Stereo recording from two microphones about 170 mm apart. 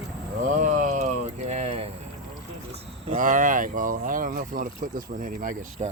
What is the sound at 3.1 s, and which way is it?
Speech, 50° right (ahead or behind).